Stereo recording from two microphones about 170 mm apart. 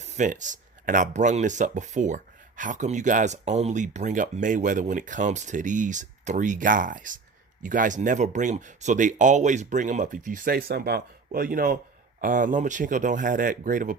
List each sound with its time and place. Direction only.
0.0 s speech: 45° right (ahead or behind)